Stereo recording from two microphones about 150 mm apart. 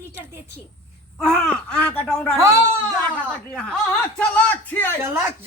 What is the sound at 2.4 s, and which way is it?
Speech, 20° right (ahead or behind).